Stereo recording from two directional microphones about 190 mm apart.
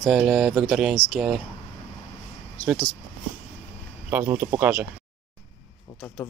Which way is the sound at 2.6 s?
Centre (ahead or behind).